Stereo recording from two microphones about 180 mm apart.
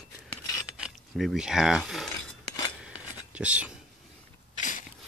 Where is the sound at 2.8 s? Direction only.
5° right (ahead or behind).